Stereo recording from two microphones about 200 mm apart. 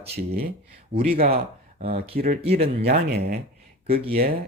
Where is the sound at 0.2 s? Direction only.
50° right (ahead or behind).